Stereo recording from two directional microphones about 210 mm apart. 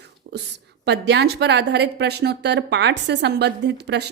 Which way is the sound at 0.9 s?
55° right (ahead or behind).